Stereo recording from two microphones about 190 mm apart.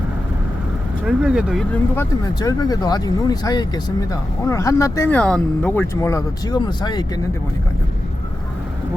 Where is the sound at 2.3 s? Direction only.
20° left (ahead or behind).